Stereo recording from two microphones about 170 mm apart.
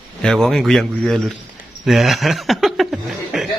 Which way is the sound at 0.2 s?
5° left (ahead or behind).